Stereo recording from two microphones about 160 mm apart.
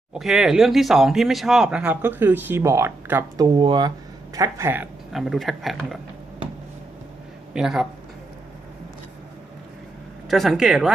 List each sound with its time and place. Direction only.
0.1 s speech: 5° right (ahead or behind)
3.4 s speech: 30° right (ahead or behind)
5.1 s speech: centre (ahead or behind)
7.5 s speech: 5° right (ahead or behind)
10.2 s speech: centre (ahead or behind)